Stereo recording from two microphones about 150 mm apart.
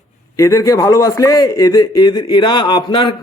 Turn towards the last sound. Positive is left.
turn(degrees=30)  # may be behind; listen again after turning